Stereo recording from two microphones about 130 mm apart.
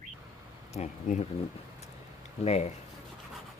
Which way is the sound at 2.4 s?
55° left (ahead or behind).